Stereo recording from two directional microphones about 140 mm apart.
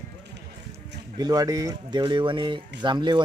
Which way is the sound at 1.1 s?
30° right (ahead or behind).